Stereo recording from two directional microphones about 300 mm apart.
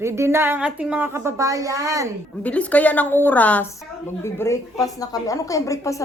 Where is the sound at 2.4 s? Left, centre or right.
Centre.